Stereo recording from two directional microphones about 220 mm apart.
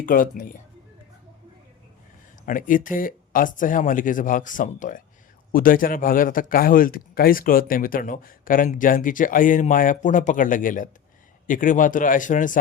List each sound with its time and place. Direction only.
0.0 s a man's voice: 40° left (ahead or behind)
2.5 s a man's voice: 40° left (ahead or behind)